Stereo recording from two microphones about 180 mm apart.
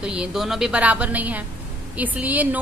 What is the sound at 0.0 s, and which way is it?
A woman's voice, 5° right (ahead or behind).